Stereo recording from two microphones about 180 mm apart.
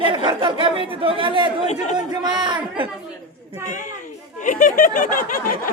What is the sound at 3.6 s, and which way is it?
Speech, 45° left (ahead or behind).